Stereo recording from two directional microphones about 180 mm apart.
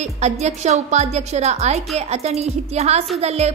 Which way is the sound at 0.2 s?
40° right (ahead or behind).